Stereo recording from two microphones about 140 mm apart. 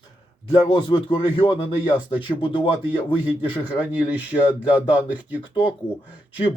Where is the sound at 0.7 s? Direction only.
35° left (ahead or behind).